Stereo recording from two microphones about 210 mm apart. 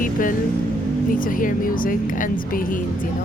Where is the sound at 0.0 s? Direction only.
40° left (ahead or behind).